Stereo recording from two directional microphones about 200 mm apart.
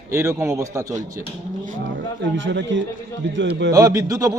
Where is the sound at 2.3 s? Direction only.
70° right (ahead or behind).